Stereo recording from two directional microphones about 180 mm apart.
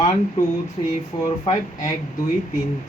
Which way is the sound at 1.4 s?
25° left (ahead or behind).